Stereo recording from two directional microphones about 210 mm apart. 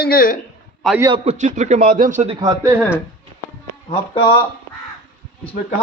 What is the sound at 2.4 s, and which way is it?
Speech, 10° right (ahead or behind).